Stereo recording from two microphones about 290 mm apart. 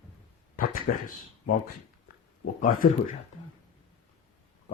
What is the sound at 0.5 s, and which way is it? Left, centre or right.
Speech, left.